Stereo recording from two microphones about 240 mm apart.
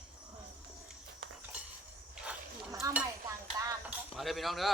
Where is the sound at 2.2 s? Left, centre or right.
Centre.